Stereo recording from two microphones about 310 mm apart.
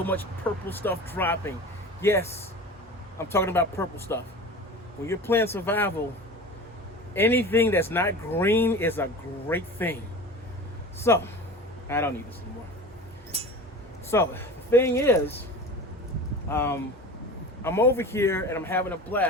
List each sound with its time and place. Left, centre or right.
0.0 s speech: centre
7.1 s speech: centre
11.0 s speech: centre
13.3 s chink: centre
14.1 s speech: centre
16.5 s speech: centre